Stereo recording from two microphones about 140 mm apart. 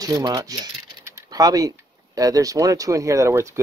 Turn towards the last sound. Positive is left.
turn(degrees=-20)  # may be behind; listen again after turning